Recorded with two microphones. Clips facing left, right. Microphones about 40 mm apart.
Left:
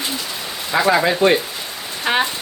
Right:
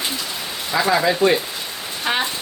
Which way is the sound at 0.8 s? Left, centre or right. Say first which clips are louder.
Left 2 dB; centre.